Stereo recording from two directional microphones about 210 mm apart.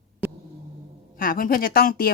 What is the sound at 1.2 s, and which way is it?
Speech, 40° left (ahead or behind).